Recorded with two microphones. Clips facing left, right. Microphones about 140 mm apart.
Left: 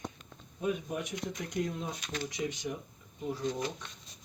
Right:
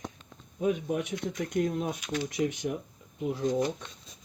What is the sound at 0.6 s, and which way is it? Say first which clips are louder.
Speech: right 5 dB; 65° right (ahead or behind).